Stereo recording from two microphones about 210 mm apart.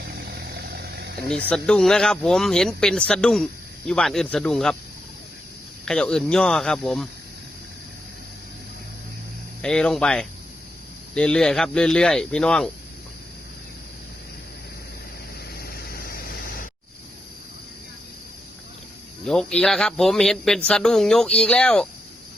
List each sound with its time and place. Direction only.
0.2 s a sound: 50° right (ahead or behind)
1.5 s speech: 5° left (ahead or behind)
5.8 s speech: 5° left (ahead or behind)
9.6 s speech: 5° left (ahead or behind)
15.5 s vehicle: 45° left (ahead or behind)
19.2 s speech: 5° left (ahead or behind)